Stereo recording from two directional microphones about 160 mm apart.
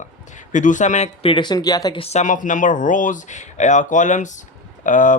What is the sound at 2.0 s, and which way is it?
Speech, 45° left (ahead or behind).